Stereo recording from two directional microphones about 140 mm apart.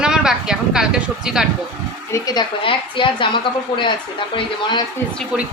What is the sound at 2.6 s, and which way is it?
Speech, 35° left (ahead or behind).